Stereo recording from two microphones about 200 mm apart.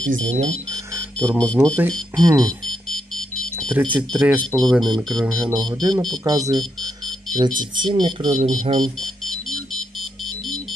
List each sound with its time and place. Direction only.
1.2 s speech: 5° left (ahead or behind)
2.1 s speech: 20° right (ahead or behind)
2.4 s music: 5° left (ahead or behind)
3.8 s speech: 5° left (ahead or behind)
5.7 s speech: 20° right (ahead or behind)